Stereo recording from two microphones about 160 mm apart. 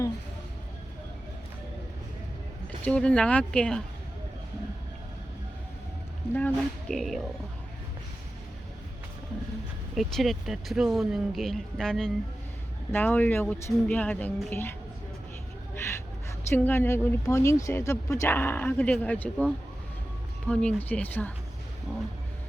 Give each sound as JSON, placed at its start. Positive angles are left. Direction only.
{"t": 2.8, "sound": "speech", "side_deg": 5}
{"t": 6.3, "sound": "speech", "side_deg": 5}
{"t": 9.9, "sound": "speech", "side_deg": 0}
{"t": 15.7, "sound": "a sound", "side_deg": 15}
{"t": 16.5, "sound": "speech", "side_deg": 15}
{"t": 20.5, "sound": "speech", "side_deg": 5}